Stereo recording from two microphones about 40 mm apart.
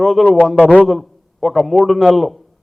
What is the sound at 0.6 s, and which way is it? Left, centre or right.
Speech, left.